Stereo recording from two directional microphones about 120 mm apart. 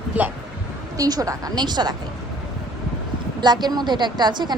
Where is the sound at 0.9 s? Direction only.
30° right (ahead or behind).